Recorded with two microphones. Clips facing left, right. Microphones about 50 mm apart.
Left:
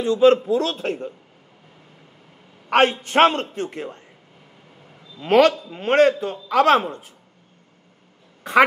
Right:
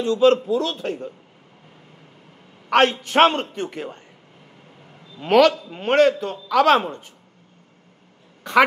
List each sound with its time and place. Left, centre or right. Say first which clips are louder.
0.0 s a man's voice: left 1 dB; centre
0.5 s a man's voice: left 1 dB; left
2.7 s a man's voice: even; centre
5.3 s a man's voice: even; centre
5.6 s a man's voice: even; centre